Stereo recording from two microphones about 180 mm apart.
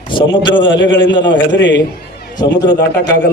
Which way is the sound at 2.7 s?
70° left (ahead or behind).